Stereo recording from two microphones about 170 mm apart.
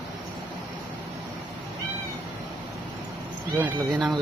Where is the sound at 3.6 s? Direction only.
5° right (ahead or behind).